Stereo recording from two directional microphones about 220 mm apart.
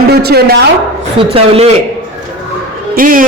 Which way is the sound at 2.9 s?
40° right (ahead or behind).